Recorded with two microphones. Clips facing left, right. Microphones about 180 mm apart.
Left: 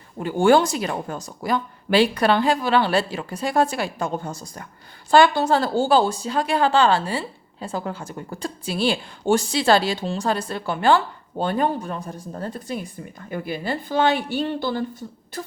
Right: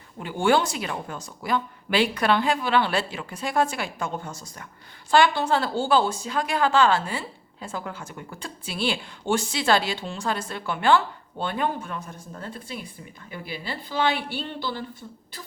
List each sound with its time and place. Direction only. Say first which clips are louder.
0.2 s a woman's voice: left 5 dB; 40° left (ahead or behind)